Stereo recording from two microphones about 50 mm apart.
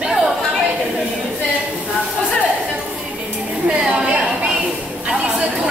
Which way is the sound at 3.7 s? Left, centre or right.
Centre.